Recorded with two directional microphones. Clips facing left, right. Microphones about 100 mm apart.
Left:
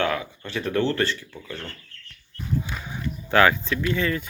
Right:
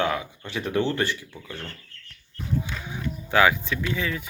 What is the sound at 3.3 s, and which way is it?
Speech, 10° right (ahead or behind).